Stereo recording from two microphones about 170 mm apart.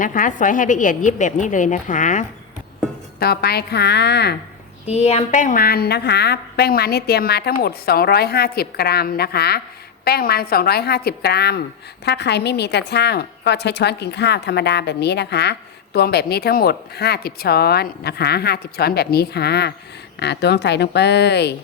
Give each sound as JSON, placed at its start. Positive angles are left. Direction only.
{"t": 0.0, "sound": "a woman's voice", "side_deg": 50}
{"t": 3.2, "sound": "a woman's voice", "side_deg": 65}
{"t": 4.9, "sound": "a woman's voice", "side_deg": 35}